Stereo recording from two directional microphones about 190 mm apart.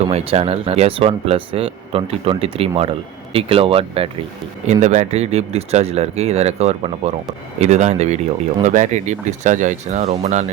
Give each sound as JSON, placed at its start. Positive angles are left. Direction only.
{"t": 0.1, "sound": "speech", "side_deg": -35}